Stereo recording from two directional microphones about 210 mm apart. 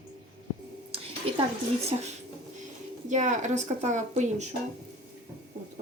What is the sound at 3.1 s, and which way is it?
A woman's voice, 35° right (ahead or behind).